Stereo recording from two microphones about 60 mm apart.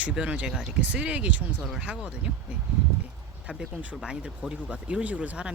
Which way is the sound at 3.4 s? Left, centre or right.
Right.